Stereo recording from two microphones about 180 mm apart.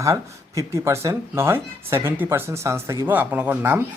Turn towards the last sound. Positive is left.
turn(degrees=-10)  # may be behind; listen again after turning